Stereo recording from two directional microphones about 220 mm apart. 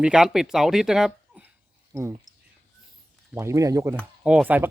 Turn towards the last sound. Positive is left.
turn(degrees=-5)  # may be behind; listen again after turning